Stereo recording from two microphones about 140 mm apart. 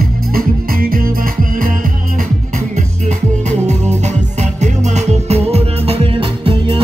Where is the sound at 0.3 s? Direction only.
90° right.